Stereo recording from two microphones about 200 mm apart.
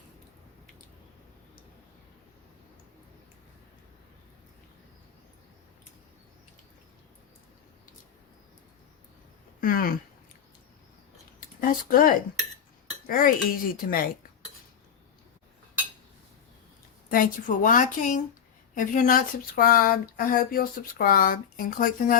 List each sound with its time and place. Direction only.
9.6 s speech: 45° left (ahead or behind)
11.3 s a sound: 45° left (ahead or behind)
13.1 s speech: 45° left (ahead or behind)
17.1 s speech: 45° left (ahead or behind)